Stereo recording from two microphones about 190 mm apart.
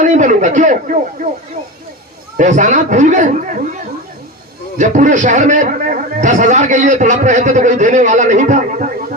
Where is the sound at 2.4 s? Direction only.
40° right (ahead or behind).